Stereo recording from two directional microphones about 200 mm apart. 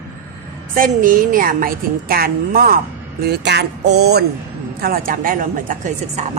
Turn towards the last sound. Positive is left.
turn(degrees=-40)  # may be behind; listen again after turning